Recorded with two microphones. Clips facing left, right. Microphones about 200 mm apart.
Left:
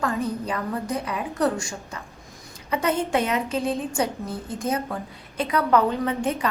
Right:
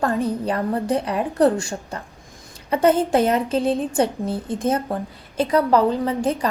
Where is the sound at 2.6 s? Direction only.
35° right (ahead or behind).